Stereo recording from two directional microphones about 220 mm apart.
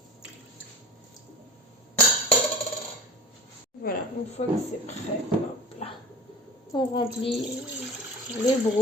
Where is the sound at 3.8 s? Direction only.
40° left (ahead or behind).